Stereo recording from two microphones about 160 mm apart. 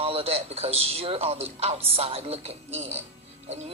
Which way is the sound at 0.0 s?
40° right (ahead or behind).